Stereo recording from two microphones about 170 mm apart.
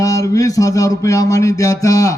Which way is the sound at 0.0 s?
20° left (ahead or behind).